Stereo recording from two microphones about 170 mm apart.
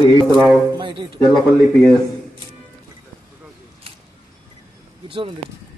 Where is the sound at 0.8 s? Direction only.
30° right (ahead or behind).